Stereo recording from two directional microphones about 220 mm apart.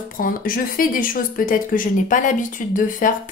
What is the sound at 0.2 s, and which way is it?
Speech, 40° left (ahead or behind).